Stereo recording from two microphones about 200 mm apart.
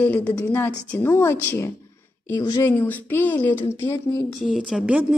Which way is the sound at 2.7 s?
10° left (ahead or behind).